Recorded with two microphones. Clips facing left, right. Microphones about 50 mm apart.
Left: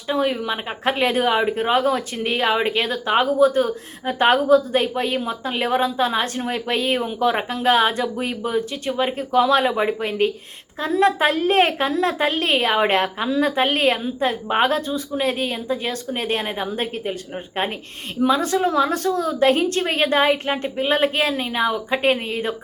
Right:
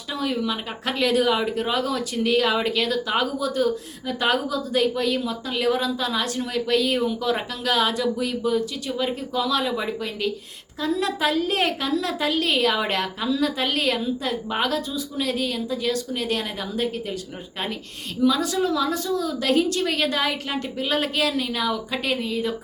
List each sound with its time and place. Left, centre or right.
0.1 s a woman's voice: left
18.2 s a woman's voice: left